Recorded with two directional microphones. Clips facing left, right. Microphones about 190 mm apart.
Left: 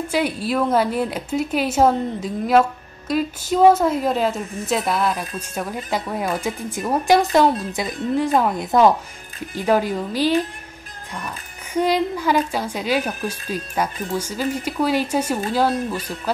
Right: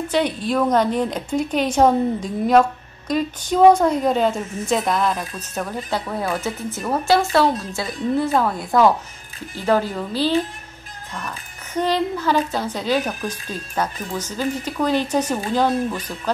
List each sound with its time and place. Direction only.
0.1 s a woman's voice: 5° left (ahead or behind)